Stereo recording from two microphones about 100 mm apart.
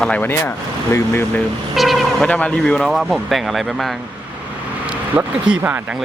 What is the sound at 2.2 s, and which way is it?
Speech, 15° left (ahead or behind).